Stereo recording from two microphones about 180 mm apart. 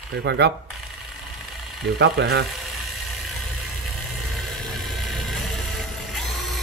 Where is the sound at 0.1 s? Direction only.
70° right (ahead or behind).